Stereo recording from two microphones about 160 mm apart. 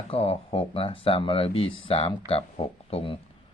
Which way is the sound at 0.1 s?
35° left (ahead or behind).